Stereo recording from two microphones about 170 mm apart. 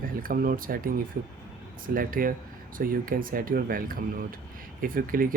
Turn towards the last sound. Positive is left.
turn(degrees=-55)  # may be behind; listen again after turning